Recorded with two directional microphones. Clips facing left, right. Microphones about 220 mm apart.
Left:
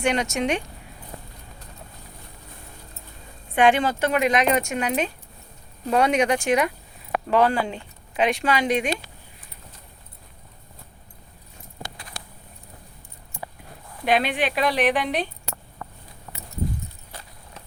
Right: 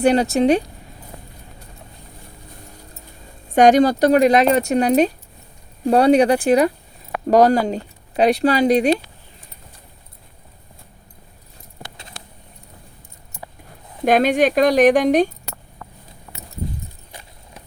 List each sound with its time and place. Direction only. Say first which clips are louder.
0.0 s speech: right 8 dB; 35° right (ahead or behind)
3.5 s speech: right 7 dB; 40° right (ahead or behind)
14.0 s speech: right 7 dB; 45° right (ahead or behind)
17.1 s vehicle: right 1 dB; 15° right (ahead or behind)